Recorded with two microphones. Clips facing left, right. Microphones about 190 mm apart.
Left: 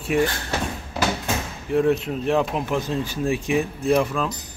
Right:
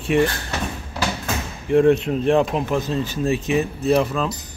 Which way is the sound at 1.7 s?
5° left (ahead or behind).